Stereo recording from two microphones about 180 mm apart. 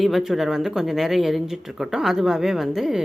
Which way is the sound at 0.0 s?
Centre (ahead or behind).